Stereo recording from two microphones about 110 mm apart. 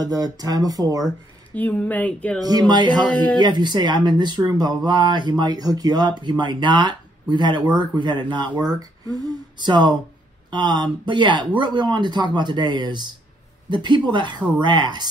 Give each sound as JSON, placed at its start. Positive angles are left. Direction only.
{"t": 0.0, "sound": "speech", "side_deg": -35}
{"t": 1.5, "sound": "speech", "side_deg": 15}
{"t": 2.7, "sound": "speech", "side_deg": -45}